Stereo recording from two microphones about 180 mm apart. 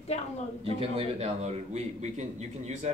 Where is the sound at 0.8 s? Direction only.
35° right (ahead or behind).